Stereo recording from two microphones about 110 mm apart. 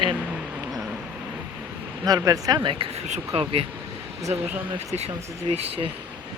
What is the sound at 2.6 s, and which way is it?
Speech, 55° right (ahead or behind).